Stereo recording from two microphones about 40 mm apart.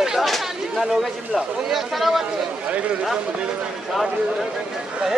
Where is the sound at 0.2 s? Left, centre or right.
Centre.